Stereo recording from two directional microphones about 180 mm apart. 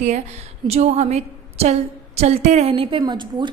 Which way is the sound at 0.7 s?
40° right (ahead or behind).